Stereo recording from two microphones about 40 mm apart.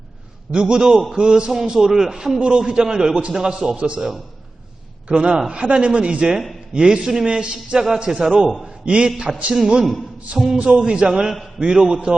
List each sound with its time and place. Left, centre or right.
0.5 s a man's voice: right
3.8 s a man's voice: right
8.8 s a man's voice: right
9.0 s a man's voice: centre
10.7 s a man's voice: right